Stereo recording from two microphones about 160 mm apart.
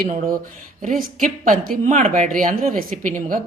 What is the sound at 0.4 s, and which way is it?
Speech, 55° right (ahead or behind).